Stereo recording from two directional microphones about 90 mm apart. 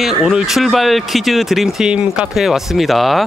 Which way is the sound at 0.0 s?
Centre (ahead or behind).